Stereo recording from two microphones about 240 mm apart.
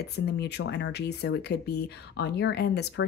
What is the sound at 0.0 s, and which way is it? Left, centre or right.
Speech, left.